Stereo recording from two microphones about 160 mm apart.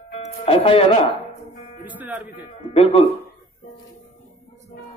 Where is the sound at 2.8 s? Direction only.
35° left (ahead or behind).